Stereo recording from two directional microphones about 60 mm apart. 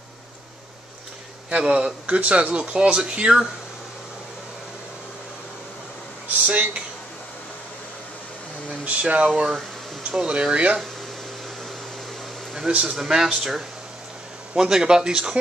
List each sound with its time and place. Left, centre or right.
1.6 s speech: centre
6.2 s a sound: right
8.6 s speech: centre
12.5 s speech: centre